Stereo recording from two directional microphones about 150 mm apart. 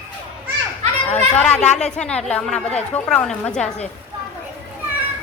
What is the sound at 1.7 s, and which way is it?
A woman's voice, 5° left (ahead or behind).